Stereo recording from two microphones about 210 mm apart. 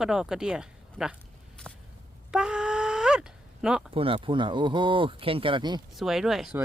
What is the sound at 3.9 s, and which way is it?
Speech, 25° right (ahead or behind).